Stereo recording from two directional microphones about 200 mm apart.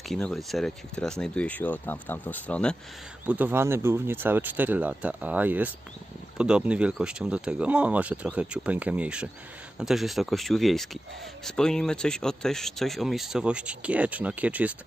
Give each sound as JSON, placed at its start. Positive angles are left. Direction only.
{"t": 0.1, "sound": "speech", "side_deg": 0}
{"t": 3.3, "sound": "speech", "side_deg": -10}